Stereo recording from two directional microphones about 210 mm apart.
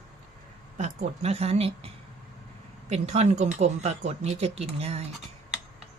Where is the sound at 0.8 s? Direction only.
35° right (ahead or behind).